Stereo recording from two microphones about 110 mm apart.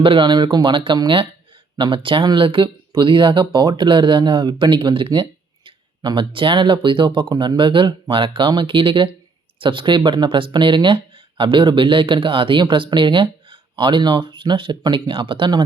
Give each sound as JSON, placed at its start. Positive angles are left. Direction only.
{"t": 0.0, "sound": "speech", "side_deg": -50}